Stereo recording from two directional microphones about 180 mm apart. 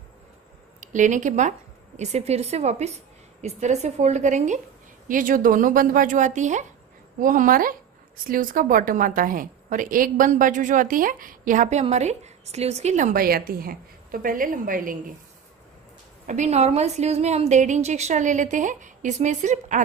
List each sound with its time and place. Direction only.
0.7 s a woman's voice: 45° right (ahead or behind)
16.3 s a woman's voice: 40° right (ahead or behind)